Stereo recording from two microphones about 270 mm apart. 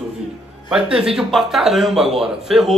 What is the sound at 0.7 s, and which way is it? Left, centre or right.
A man's voice, centre.